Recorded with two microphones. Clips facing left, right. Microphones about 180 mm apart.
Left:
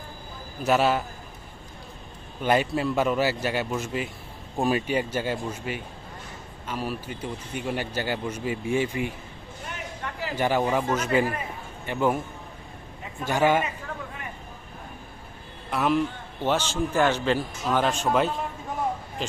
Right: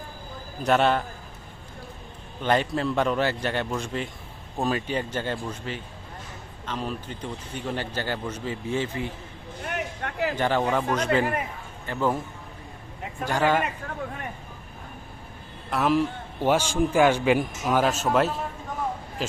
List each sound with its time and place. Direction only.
0.6 s a man's voice: 5° left (ahead or behind)
2.4 s speech: 10° left (ahead or behind)
9.6 s a sound: 65° right (ahead or behind)
10.3 s speech: 10° left (ahead or behind)
13.2 s speech: 15° left (ahead or behind)
15.7 s a man's voice: centre (ahead or behind)